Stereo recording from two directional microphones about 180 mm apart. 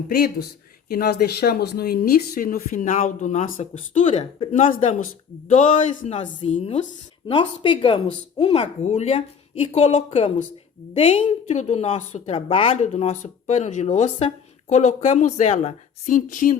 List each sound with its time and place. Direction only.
0.1 s a woman's voice: 60° left (ahead or behind); by 4.6 s 35° left (ahead or behind)
4.7 s a woman's voice: 45° left (ahead or behind)